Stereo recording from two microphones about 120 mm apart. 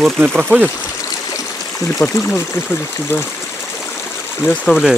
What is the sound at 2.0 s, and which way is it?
Speech, 20° left (ahead or behind).